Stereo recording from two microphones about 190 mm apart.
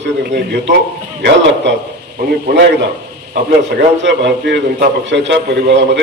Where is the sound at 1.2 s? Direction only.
70° right (ahead or behind).